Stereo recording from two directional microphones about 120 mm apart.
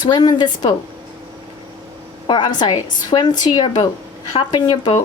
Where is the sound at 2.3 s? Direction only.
35° left (ahead or behind).